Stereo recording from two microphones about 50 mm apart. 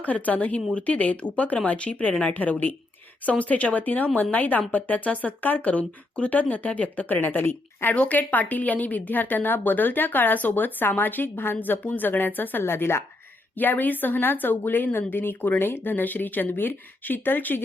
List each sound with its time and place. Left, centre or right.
0.0 s a woman's voice: left
2.3 s a woman's voice: left
7.9 s a woman's voice: left
13.6 s a woman's voice: left